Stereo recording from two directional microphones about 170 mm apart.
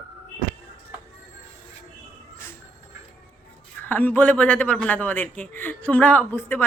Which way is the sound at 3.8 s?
10° left (ahead or behind).